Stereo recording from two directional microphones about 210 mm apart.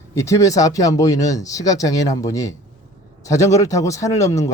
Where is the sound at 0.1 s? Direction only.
15° left (ahead or behind).